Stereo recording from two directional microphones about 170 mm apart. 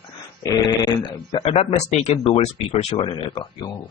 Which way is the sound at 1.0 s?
30° left (ahead or behind).